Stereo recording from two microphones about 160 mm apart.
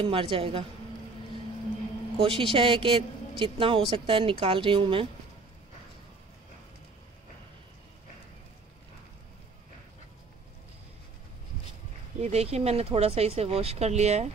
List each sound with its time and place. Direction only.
0.0 s a woman's voice: 35° right (ahead or behind)
2.1 s a woman's voice: 35° right (ahead or behind)
12.2 s a woman's voice: 40° right (ahead or behind)